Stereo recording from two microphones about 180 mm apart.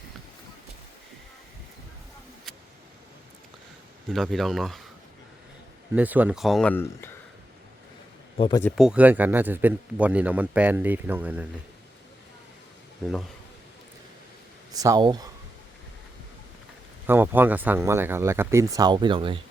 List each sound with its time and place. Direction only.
4.1 s speech: centre (ahead or behind)
5.9 s speech: 10° right (ahead or behind); by 7.1 s 10° left (ahead or behind)
8.4 s speech: 25° left (ahead or behind)
8.7 s a man's voice: 5° right (ahead or behind)
14.7 s speech: 20° right (ahead or behind)
17.1 s a man's voice: 10° right (ahead or behind); by 19.4 s 30° right (ahead or behind)